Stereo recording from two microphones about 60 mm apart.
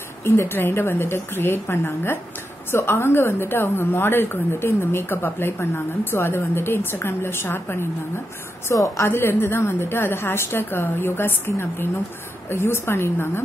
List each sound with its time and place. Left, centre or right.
0.2 s a woman's voice: left
8.6 s a woman's voice: left
9.1 s a woman's voice: left